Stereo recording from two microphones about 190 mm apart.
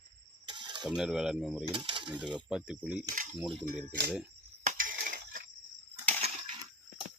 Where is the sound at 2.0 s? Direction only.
5° right (ahead or behind).